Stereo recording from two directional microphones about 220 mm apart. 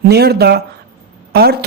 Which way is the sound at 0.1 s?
45° right (ahead or behind).